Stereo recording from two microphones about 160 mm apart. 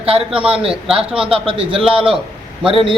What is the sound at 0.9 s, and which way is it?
A man's voice, 35° right (ahead or behind).